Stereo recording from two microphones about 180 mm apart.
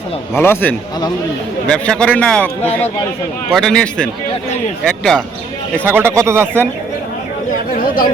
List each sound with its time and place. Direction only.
0.3 s a man's voice: 10° left (ahead or behind)
3.5 s a man's voice: 5° left (ahead or behind)
5.8 s speech: 15° right (ahead or behind)
7.5 s bird: 50° left (ahead or behind)